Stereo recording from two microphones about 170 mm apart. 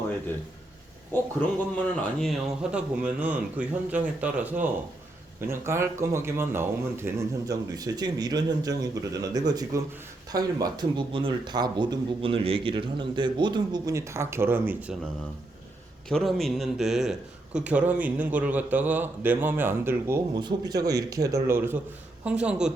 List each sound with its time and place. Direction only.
1.1 s a man's voice: 10° left (ahead or behind)
2.0 s a man's voice: centre (ahead or behind)
16.0 s a man's voice: centre (ahead or behind); by 20.2 s 15° right (ahead or behind)
20.3 s a man's voice: 25° right (ahead or behind); by 22.7 s 5° right (ahead or behind)